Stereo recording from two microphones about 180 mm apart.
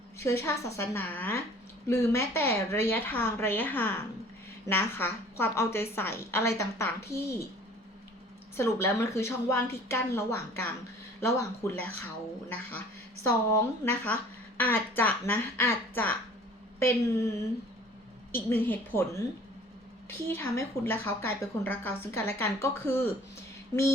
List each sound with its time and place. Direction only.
0.2 s a woman's voice: 15° left (ahead or behind)
8.5 s a woman's voice: 15° left (ahead or behind)
13.2 s a woman's voice: 15° left (ahead or behind)